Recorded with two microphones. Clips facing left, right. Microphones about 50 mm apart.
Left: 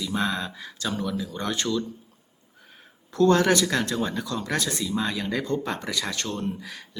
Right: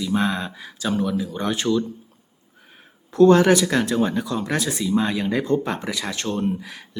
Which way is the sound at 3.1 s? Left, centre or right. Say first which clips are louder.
Right 5 dB; centre.